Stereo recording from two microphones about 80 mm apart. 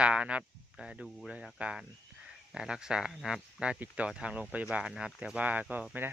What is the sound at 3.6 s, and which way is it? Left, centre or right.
Speech, centre.